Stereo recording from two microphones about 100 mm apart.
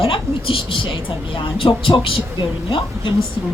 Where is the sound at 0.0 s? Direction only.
60° left (ahead or behind).